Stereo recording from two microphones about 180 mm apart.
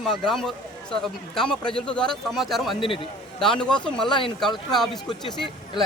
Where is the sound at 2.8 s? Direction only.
30° left (ahead or behind).